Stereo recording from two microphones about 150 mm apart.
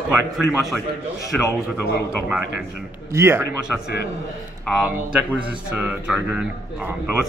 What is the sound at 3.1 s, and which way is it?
Speech, 20° right (ahead or behind).